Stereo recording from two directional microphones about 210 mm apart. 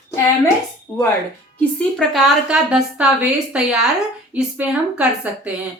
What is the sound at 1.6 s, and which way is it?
A woman's voice, 5° left (ahead or behind).